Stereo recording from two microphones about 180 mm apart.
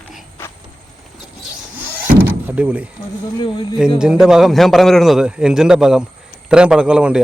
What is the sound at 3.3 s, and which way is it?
Speech, 25° left (ahead or behind).